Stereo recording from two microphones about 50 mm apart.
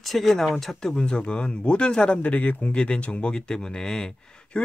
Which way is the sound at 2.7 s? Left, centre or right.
Left.